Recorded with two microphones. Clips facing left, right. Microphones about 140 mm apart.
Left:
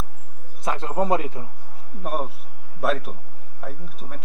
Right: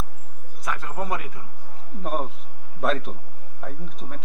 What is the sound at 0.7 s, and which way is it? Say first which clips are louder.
Speech: left 7 dB; 25° left (ahead or behind).